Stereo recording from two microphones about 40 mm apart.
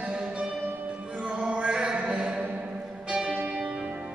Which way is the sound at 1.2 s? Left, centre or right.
Right.